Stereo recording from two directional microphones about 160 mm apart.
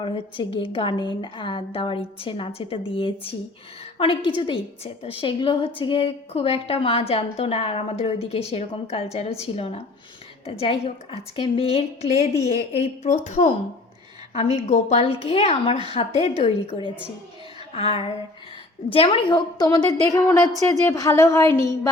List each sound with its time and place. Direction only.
0.0 s a woman's voice: 35° left (ahead or behind)